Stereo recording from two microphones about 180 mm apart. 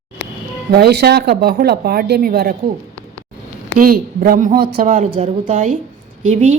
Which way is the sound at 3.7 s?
50° right (ahead or behind).